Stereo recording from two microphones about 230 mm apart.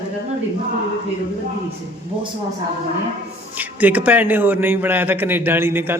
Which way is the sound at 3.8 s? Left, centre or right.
Centre.